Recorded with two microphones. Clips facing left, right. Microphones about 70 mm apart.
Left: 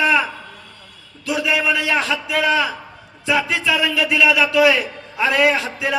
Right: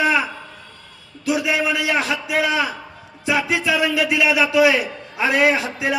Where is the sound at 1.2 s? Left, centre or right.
Centre.